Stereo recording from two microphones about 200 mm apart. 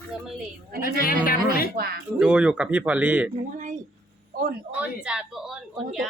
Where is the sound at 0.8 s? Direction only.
45° left (ahead or behind).